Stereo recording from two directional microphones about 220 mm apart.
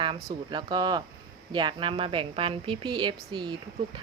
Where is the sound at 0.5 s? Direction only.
20° right (ahead or behind).